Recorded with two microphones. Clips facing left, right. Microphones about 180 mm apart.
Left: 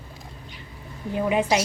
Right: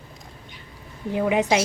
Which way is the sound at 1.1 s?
15° right (ahead or behind).